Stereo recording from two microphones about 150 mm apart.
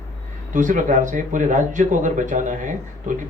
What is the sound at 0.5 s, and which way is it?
A man's voice, 60° right (ahead or behind).